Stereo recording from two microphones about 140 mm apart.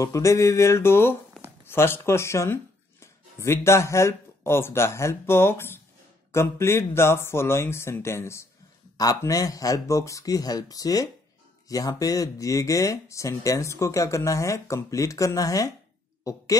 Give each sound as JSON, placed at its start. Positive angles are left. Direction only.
{"t": 0.0, "sound": "speech", "side_deg": 20}